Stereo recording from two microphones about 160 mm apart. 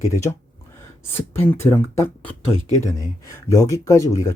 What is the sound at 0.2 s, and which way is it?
Speech, 15° left (ahead or behind).